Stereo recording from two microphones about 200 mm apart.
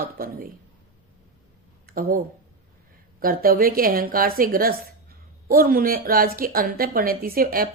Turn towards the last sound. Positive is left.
turn(degrees=-45)  # may be behind; listen again after turning